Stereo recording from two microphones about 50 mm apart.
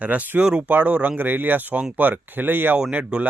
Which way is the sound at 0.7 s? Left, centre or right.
Right.